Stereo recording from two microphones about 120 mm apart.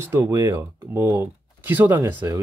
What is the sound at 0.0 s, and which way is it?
Speech, 20° right (ahead or behind).